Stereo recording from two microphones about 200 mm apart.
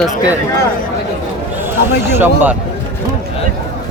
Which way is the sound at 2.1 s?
10° right (ahead or behind).